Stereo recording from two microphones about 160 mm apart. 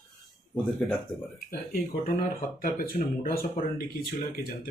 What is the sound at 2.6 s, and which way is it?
Speech, 60° left (ahead or behind).